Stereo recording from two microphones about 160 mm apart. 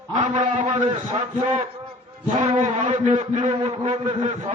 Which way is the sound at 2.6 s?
50° right (ahead or behind).